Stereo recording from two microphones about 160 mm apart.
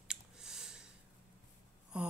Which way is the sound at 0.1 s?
5° right (ahead or behind).